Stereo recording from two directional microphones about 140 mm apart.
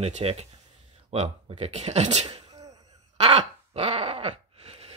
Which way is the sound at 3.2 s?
50° right (ahead or behind).